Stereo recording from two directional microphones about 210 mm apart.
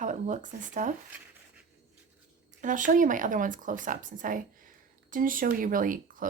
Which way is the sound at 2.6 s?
40° right (ahead or behind).